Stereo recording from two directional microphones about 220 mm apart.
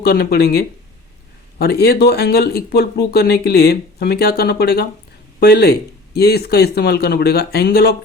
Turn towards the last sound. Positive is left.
turn(degrees=45)  # may be behind; listen again after turning